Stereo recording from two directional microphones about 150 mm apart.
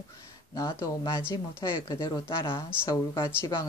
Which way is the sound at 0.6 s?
20° left (ahead or behind).